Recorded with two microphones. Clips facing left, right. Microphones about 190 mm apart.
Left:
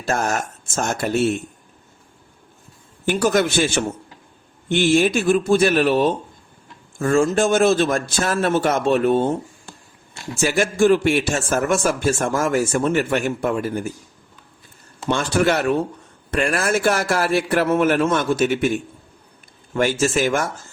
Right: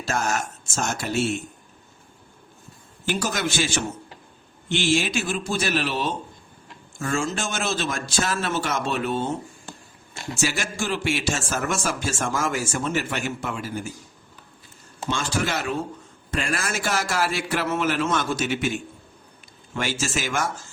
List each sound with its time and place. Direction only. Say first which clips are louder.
0.0 s a man's voice: left 4 dB; 50° left (ahead or behind)
3.1 s a man's voice: left 8 dB; 55° left (ahead or behind)
10.3 s a man's voice: left 8 dB; 55° left (ahead or behind)
15.1 s a man's voice: left 8 dB; 60° left (ahead or behind)